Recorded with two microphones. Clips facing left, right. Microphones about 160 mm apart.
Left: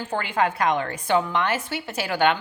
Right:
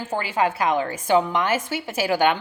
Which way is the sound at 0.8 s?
20° right (ahead or behind).